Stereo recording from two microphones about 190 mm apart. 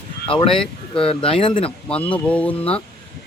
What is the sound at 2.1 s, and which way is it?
Speech, 5° left (ahead or behind).